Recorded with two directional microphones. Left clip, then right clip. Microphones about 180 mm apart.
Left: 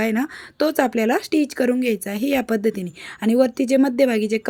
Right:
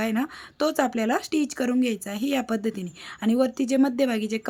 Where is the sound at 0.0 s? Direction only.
20° left (ahead or behind).